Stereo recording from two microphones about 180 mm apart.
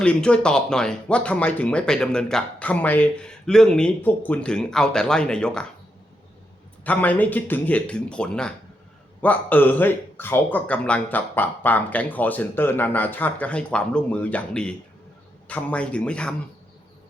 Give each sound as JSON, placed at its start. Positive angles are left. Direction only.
{"t": 0.0, "sound": "speech", "side_deg": 5}
{"t": 6.8, "sound": "speech", "side_deg": 10}